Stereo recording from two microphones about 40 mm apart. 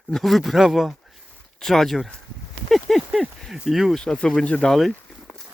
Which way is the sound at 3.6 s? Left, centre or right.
Centre.